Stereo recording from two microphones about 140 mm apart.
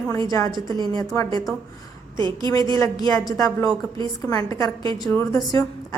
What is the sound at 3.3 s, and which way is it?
A woman's voice, 25° left (ahead or behind).